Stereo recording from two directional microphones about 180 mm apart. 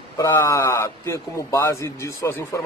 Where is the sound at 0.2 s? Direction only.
15° left (ahead or behind).